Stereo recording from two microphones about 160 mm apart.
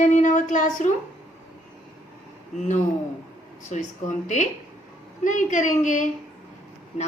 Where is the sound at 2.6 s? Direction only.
50° left (ahead or behind).